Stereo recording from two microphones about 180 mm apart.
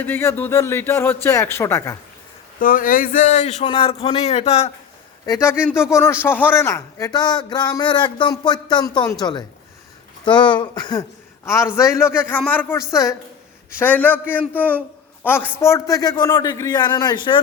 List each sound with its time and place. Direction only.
0.0 s speech: 10° left (ahead or behind)
2.6 s a man's voice: 50° left (ahead or behind)
5.2 s speech: 15° left (ahead or behind)
10.2 s speech: 25° left (ahead or behind)